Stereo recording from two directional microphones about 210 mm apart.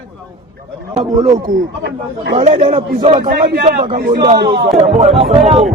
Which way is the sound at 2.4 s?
35° right (ahead or behind).